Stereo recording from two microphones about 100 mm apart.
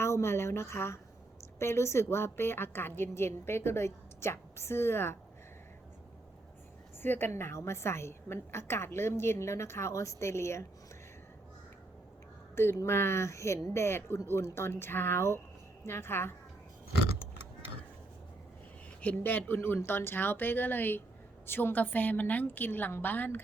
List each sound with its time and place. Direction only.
0.0 s a sound: 25° left (ahead or behind)
1.5 s a woman's voice: 25° left (ahead or behind)
7.0 s a woman's voice: 20° left (ahead or behind)
12.5 s a woman's voice: 25° left (ahead or behind)
19.0 s a woman's voice: 20° left (ahead or behind)